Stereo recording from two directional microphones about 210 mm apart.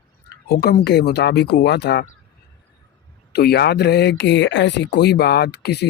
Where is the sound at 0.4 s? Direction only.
45° left (ahead or behind).